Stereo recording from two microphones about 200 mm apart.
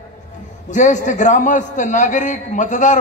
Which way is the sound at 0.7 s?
40° left (ahead or behind).